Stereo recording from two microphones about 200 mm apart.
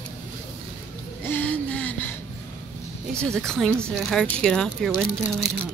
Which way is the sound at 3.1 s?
5° left (ahead or behind).